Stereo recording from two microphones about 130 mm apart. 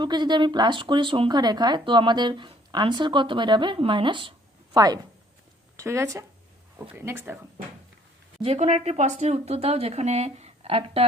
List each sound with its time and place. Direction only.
0.0 s speech: 35° right (ahead or behind); by 7.3 s 20° right (ahead or behind)
8.5 s speech: 60° right (ahead or behind)